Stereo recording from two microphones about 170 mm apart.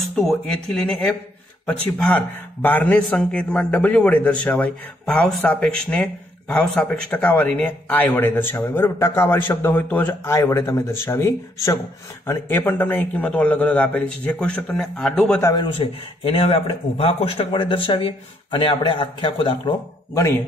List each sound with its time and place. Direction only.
0.0 s speech: centre (ahead or behind)
15.4 s speech: 25° left (ahead or behind)